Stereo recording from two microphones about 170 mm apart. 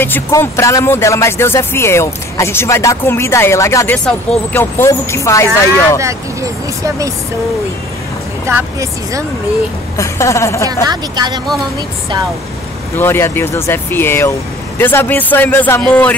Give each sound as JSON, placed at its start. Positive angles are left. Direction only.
{"t": 0.0, "sound": "speech", "side_deg": 10}
{"t": 5.5, "sound": "speech", "side_deg": -15}
{"t": 8.5, "sound": "speech", "side_deg": -15}
{"t": 9.9, "sound": "speech", "side_deg": 15}
{"t": 10.9, "sound": "speech", "side_deg": -25}
{"t": 12.9, "sound": "speech", "side_deg": 15}